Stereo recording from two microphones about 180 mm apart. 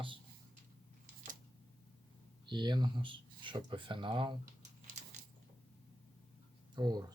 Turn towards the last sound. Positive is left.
turn(degrees=-20)  # may be behind; listen again after turning